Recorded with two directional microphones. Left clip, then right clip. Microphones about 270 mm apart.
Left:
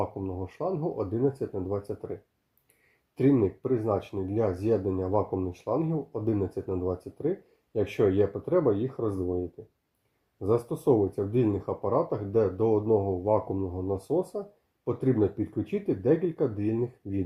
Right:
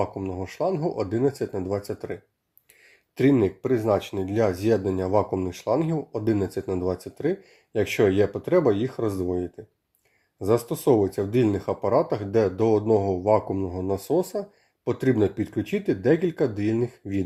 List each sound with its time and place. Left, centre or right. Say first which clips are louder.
0.0 s speech: right 4 dB; right
3.2 s speech: right 4 dB; right